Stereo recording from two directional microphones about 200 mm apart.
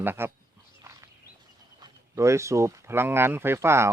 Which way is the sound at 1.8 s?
20° right (ahead or behind).